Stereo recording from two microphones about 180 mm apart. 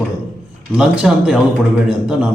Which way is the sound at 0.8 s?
5° right (ahead or behind).